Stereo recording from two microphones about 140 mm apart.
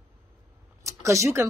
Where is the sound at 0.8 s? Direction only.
20° right (ahead or behind).